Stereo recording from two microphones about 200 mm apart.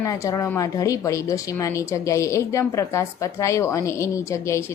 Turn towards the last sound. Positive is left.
turn(degrees=15)  # may be behind; listen again after turning